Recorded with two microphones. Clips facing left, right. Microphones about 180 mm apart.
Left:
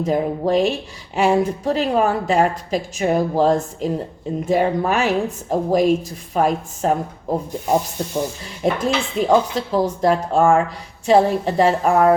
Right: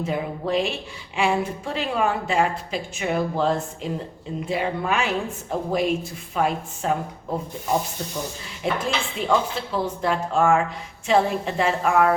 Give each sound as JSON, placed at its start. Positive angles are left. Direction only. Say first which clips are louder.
{"t": 0.0, "sound": "a woman's voice", "louder": "left 7 dB", "side_deg": 40}